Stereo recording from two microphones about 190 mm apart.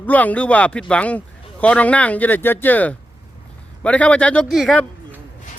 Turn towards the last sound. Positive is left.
turn(degrees=0)  # may be behind; listen again after turning